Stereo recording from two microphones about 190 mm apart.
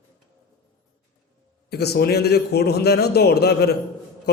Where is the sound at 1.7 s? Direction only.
60° left (ahead or behind).